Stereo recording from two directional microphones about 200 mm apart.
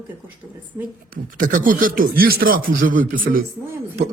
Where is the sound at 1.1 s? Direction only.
40° right (ahead or behind).